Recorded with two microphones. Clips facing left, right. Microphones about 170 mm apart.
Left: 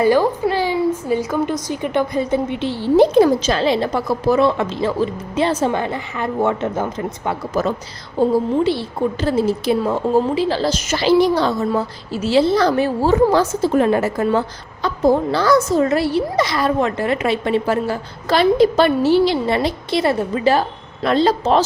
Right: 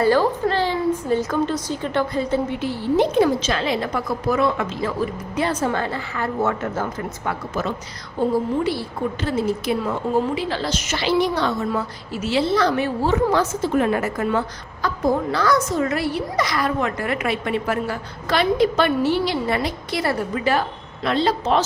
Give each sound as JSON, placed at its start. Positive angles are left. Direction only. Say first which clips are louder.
{"t": 0.0, "sound": "a woman's voice", "louder": "left 3 dB", "side_deg": 15}